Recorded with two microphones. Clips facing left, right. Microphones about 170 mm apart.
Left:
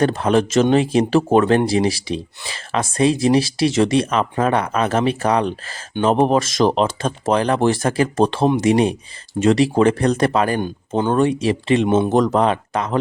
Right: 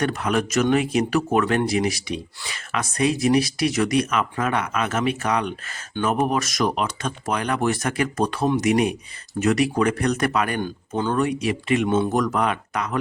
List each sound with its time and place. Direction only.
0.0 s speech: 30° left (ahead or behind)